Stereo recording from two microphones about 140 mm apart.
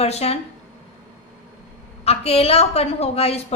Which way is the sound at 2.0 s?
45° left (ahead or behind).